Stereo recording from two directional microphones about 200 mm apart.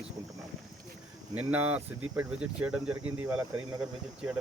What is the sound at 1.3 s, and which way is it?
Speech, 5° right (ahead or behind).